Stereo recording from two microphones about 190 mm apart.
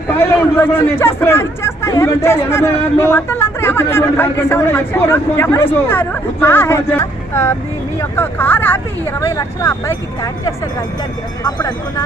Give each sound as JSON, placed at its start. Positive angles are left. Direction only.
{"t": 0.6, "sound": "speech", "side_deg": 10}